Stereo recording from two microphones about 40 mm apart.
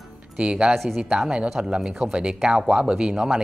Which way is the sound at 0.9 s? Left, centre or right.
Centre.